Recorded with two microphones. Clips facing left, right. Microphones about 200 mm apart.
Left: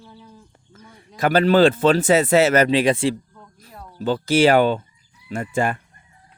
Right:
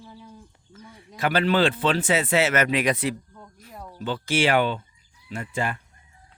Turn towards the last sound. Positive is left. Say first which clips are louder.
# left 6 dB
turn(degrees=50)  # may be behind; listen again after turning